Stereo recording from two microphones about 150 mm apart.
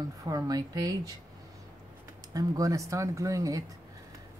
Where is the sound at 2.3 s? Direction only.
20° right (ahead or behind).